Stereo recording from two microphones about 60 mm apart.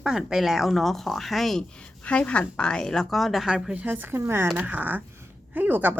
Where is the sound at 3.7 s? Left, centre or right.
Right.